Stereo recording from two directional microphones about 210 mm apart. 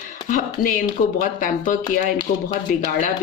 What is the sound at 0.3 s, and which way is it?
Speech, 40° left (ahead or behind).